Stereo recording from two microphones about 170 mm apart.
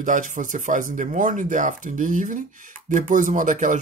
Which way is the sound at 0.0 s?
50° right (ahead or behind).